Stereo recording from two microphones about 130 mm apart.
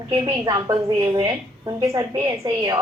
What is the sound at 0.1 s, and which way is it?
A woman's voice, 30° right (ahead or behind).